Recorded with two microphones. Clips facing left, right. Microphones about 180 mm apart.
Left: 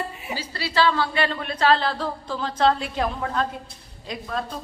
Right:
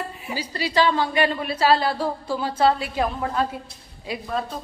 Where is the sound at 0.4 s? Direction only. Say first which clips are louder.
Right 2 dB; 15° right (ahead or behind).